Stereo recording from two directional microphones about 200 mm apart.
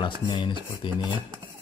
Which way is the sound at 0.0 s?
25° left (ahead or behind).